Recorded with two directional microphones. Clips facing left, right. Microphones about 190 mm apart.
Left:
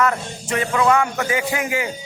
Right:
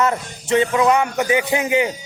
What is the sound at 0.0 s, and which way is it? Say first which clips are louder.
Speech: right 1 dB; 25° right (ahead or behind).